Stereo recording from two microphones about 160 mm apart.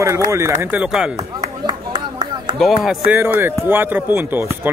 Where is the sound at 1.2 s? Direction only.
25° right (ahead or behind).